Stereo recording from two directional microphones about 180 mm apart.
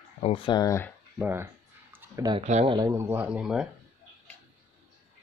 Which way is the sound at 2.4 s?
35° right (ahead or behind).